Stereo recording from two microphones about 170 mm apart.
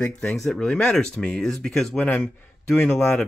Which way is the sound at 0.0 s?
5° left (ahead or behind).